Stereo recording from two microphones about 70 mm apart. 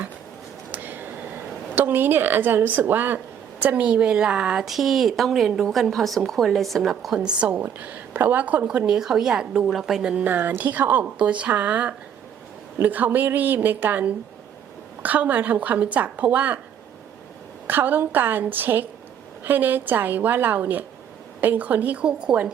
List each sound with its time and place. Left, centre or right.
0.7 s a sound: right
1.7 s a woman's voice: right
9.0 s a woman's voice: centre
10.2 s speech: right
17.7 s speech: right